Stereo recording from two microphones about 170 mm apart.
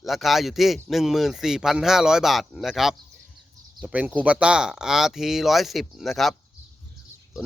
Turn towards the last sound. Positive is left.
turn(degrees=0)  # may be behind; listen again after turning